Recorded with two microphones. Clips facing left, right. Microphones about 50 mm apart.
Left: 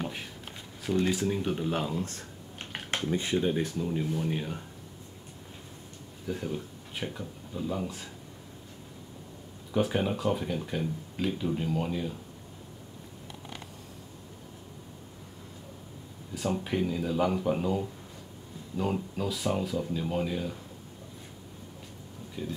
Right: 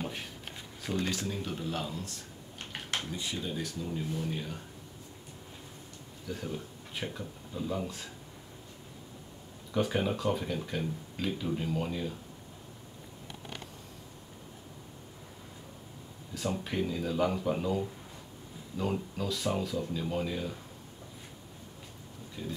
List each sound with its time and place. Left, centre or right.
0.9 s speech: centre
2.7 s a sound: left
3.1 s speech: left
6.2 s speech: centre
9.7 s speech: centre
16.4 s speech: centre
22.4 s speech: centre